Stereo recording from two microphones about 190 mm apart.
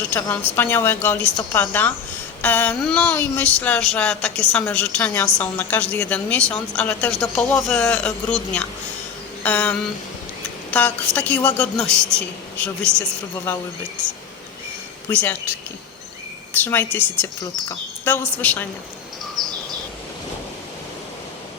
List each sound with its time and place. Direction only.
0.1 s speech: 10° left (ahead or behind)
15.1 s speech: 10° left (ahead or behind)
16.5 s speech: 10° left (ahead or behind)
19.4 s bird: centre (ahead or behind)